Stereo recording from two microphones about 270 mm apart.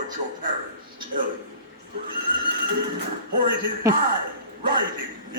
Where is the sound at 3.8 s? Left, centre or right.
Centre.